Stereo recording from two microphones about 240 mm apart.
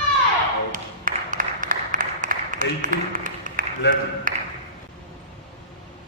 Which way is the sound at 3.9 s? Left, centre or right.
Left.